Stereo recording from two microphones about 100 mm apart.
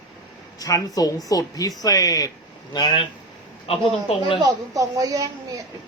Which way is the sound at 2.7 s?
50° left (ahead or behind).